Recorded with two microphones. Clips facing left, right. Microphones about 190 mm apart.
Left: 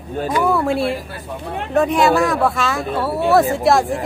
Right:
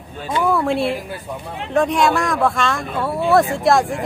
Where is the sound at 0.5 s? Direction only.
Centre (ahead or behind).